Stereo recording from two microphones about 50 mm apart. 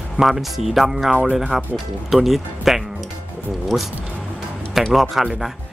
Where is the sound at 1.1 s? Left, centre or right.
Right.